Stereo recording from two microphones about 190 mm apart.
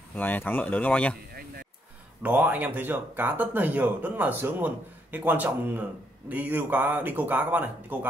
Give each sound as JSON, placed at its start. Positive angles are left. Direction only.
{"t": 0.1, "sound": "speech", "side_deg": 10}
{"t": 1.3, "sound": "a sound", "side_deg": -50}
{"t": 2.2, "sound": "speech", "side_deg": -10}